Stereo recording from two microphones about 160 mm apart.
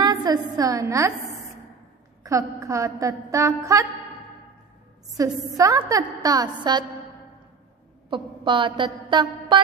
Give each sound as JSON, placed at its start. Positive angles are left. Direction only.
{"t": 0.0, "sound": "a woman's voice", "side_deg": -25}
{"t": 2.2, "sound": "a woman's voice", "side_deg": -20}
{"t": 5.1, "sound": "a woman's voice", "side_deg": -20}
{"t": 8.1, "sound": "a sound", "side_deg": -30}